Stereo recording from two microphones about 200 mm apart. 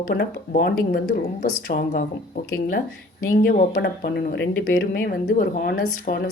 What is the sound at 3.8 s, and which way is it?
Speech, 55° left (ahead or behind).